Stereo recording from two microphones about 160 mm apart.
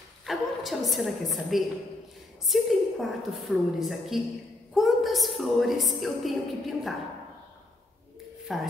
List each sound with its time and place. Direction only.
0.2 s a woman's voice: centre (ahead or behind)
8.5 s a woman's voice: centre (ahead or behind)